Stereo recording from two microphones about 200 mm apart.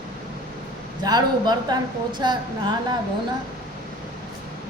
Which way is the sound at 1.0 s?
20° right (ahead or behind).